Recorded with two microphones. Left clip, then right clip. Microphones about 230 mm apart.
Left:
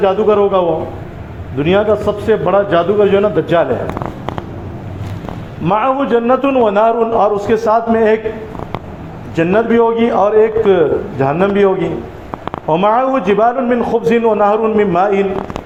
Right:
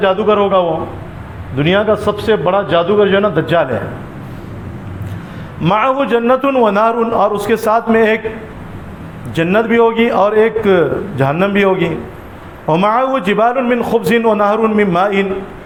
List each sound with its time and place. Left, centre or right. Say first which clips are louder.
0.0 s a man's voice: left 1 dB; right
5.6 s a man's voice: right 1 dB; right
9.3 s a man's voice: even; right